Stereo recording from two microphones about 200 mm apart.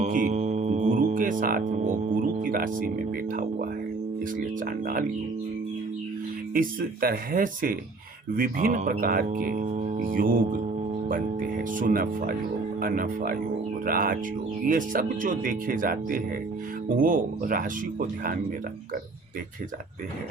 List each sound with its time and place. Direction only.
0.0 s speech: 40° right (ahead or behind)
4.4 s speech: 45° right (ahead or behind)
6.5 s speech: 45° right (ahead or behind)